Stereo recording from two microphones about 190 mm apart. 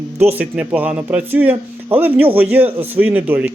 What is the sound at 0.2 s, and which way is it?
A man's voice, 10° right (ahead or behind).